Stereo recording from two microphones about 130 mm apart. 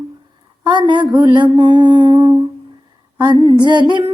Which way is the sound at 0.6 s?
35° right (ahead or behind).